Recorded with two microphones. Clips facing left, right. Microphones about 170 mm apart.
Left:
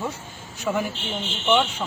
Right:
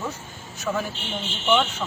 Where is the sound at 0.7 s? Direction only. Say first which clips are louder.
Left 2 dB; 15° left (ahead or behind).